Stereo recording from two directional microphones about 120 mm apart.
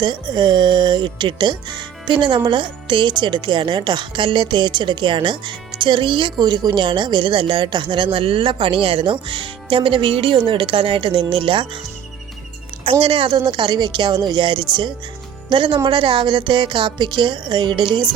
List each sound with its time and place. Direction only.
0.0 s speech: 40° right (ahead or behind)
12.8 s speech: 50° right (ahead or behind)